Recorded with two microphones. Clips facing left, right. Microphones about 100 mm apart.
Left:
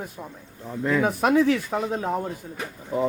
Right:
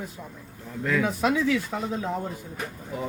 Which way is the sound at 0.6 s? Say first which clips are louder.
Left 3 dB; 25° left (ahead or behind).